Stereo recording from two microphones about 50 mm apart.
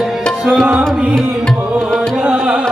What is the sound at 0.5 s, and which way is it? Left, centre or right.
Tabla, centre.